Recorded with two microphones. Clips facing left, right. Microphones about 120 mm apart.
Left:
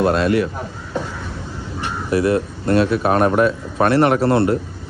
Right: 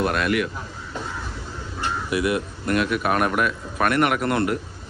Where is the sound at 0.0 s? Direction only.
30° left (ahead or behind).